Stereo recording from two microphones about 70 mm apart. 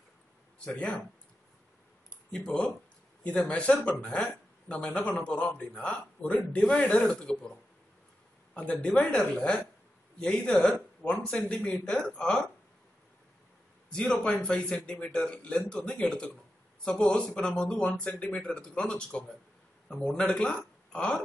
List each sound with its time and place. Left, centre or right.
0.7 s a man's voice: centre
2.3 s a man's voice: centre
8.5 s a man's voice: centre
14.2 s a man's voice: centre